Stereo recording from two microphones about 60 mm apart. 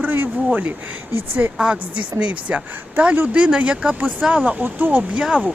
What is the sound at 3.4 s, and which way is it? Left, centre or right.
Speech, centre.